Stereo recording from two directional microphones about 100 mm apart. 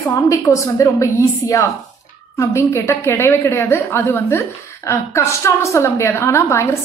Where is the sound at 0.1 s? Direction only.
30° left (ahead or behind).